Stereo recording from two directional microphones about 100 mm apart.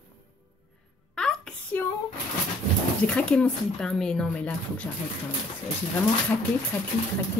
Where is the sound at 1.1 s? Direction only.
5° left (ahead or behind).